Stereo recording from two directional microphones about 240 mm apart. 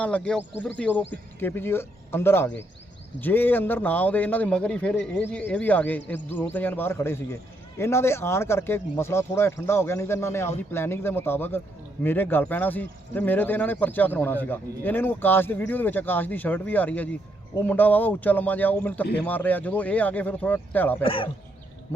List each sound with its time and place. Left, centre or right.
0.0 s speech: centre
21.0 s speech: left